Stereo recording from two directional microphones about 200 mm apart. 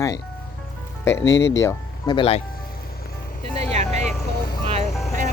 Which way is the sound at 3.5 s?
35° right (ahead or behind).